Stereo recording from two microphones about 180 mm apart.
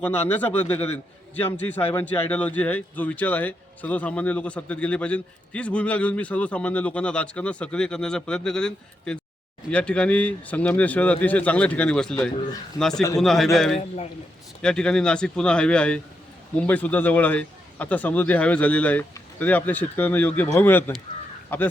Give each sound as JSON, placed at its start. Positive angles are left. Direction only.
{"t": 0.0, "sound": "speech", "side_deg": 10}
{"t": 13.7, "sound": "a man's voice", "side_deg": 35}
{"t": 14.6, "sound": "speech", "side_deg": 5}